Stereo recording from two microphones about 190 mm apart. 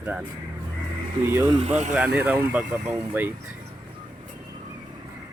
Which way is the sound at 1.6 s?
35° right (ahead or behind).